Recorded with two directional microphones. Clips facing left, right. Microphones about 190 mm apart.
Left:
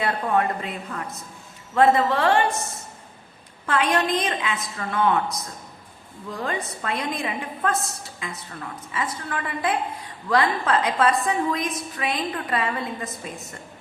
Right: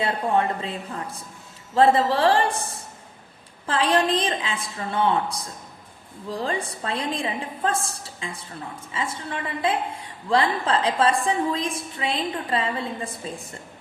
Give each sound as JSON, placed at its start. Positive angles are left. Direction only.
{"t": 0.0, "sound": "a woman's voice", "side_deg": -30}